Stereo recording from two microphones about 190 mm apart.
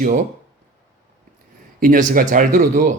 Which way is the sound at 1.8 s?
45° right (ahead or behind).